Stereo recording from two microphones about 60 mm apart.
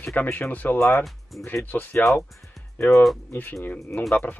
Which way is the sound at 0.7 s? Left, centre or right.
Left.